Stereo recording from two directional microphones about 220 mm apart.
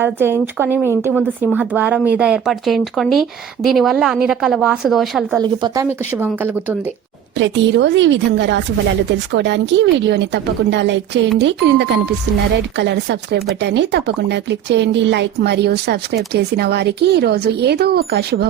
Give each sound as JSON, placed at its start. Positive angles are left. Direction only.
{"t": 0.0, "sound": "a woman's voice", "side_deg": -10}
{"t": 5.4, "sound": "a woman's voice", "side_deg": -15}
{"t": 7.3, "sound": "speech", "side_deg": -55}